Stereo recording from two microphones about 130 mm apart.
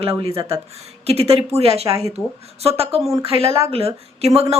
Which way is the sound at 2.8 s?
50° right (ahead or behind).